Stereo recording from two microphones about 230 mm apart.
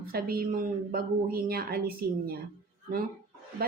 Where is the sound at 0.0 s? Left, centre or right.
Right.